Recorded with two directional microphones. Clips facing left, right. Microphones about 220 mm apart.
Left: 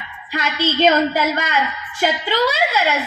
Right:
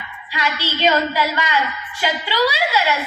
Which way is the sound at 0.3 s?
50° left (ahead or behind).